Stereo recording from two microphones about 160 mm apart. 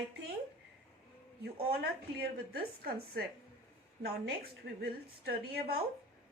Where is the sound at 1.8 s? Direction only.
80° right.